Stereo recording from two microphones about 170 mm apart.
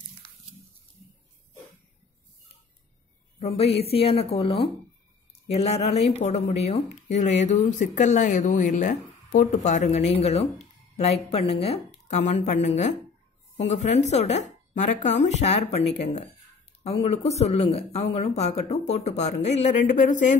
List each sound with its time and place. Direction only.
3.3 s speech: 35° left (ahead or behind)